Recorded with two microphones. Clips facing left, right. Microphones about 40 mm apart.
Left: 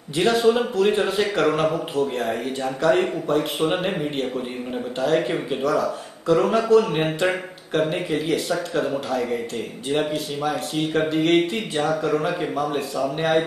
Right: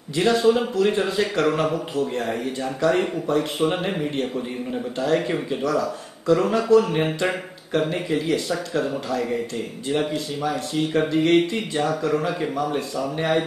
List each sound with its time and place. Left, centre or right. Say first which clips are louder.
0.1 s speech: even; centre
5.3 s speech: left 1 dB; centre